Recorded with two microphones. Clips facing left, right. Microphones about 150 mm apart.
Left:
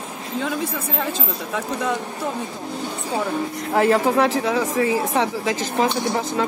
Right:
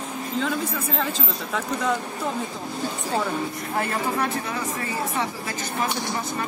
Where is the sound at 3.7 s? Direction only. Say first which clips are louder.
Left 10 dB; 90° left.